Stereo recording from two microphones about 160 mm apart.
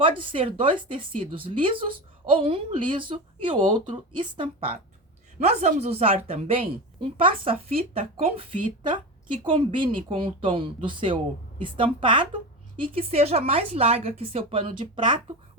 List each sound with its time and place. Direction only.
0.2 s speech: 35° right (ahead or behind)